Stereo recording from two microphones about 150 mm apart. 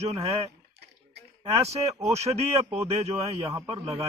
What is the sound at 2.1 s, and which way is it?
Speech, 45° right (ahead or behind).